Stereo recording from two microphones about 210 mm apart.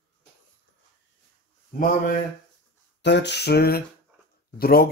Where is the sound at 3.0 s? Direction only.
55° left (ahead or behind).